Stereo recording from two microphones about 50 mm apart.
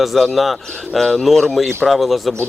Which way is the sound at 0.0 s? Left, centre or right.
Centre.